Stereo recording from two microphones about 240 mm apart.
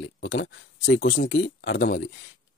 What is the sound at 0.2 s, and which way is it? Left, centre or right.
Speech, left.